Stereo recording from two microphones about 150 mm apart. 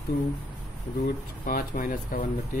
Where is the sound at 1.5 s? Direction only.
65° left (ahead or behind).